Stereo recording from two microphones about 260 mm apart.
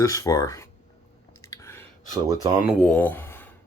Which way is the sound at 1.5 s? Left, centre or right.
Centre.